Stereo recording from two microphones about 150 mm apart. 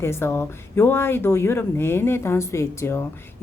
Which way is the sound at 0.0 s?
15° left (ahead or behind).